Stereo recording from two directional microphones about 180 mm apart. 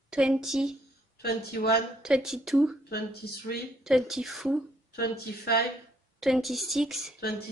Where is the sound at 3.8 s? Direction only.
Centre (ahead or behind).